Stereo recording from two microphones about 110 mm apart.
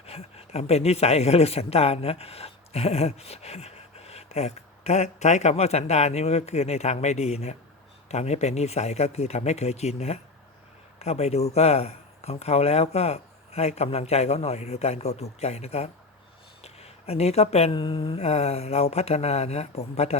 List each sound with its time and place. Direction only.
0.0 s speech: 65° left (ahead or behind)
16.6 s a sound: 70° left (ahead or behind)
17.7 s speech: 50° left (ahead or behind); by 20.1 s 80° left